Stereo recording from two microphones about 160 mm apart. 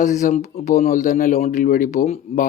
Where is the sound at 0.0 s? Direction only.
50° left (ahead or behind).